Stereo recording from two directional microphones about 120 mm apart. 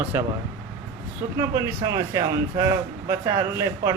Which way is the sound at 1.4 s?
30° right (ahead or behind).